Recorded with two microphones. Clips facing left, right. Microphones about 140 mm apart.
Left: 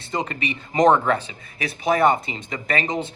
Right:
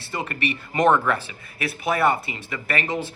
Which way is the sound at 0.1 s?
20° left (ahead or behind).